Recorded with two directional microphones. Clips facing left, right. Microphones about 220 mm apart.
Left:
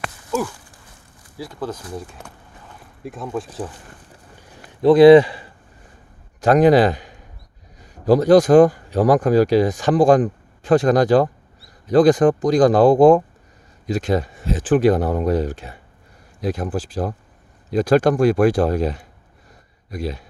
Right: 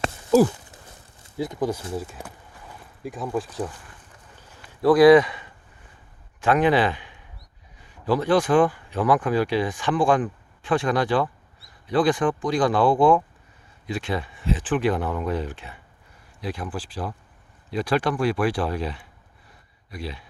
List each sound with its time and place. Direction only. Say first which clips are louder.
0.0 s horse: right 7 dB; 30° right (ahead or behind)
1.2 s speech: right 3 dB; 20° right (ahead or behind)
2.2 s a sound: right 2 dB; 10° right (ahead or behind)
3.0 s speech: even; centre (ahead or behind)
4.8 s a man's voice: left 5 dB; 25° left (ahead or behind); by 20.2 s 45° left (ahead or behind)